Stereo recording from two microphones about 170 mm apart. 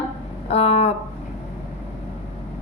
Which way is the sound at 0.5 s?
40° left (ahead or behind).